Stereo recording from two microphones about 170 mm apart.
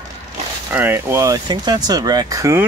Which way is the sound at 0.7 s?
15° right (ahead or behind).